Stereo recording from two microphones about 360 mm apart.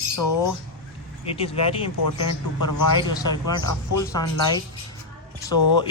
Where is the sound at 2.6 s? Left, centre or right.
Left.